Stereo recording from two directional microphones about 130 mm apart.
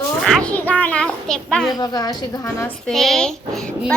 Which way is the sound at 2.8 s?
Centre (ahead or behind).